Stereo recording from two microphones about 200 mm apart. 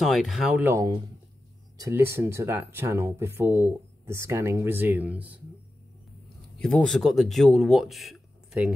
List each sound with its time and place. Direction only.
0.0 s speech: centre (ahead or behind)
6.6 s speech: 5° left (ahead or behind)